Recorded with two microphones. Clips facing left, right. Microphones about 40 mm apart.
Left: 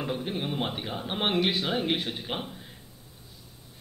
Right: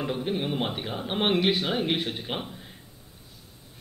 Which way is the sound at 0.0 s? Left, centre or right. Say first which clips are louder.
Right 3 dB; centre.